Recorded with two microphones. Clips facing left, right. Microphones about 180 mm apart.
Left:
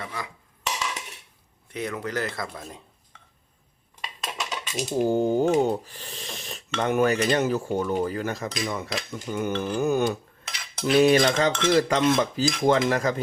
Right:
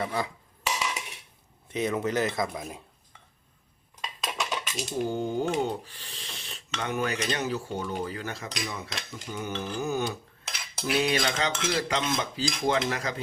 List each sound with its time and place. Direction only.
0.0 s speech: 30° right (ahead or behind)
1.7 s speech: 20° right (ahead or behind)
4.0 s dishes: centre (ahead or behind)
4.9 s speech: 45° left (ahead or behind)
10.4 s cutlery: 5° right (ahead or behind)
10.9 s speech: 50° left (ahead or behind)